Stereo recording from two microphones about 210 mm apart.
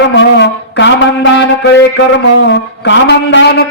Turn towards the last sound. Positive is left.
turn(degrees=55)  # may be behind; listen again after turning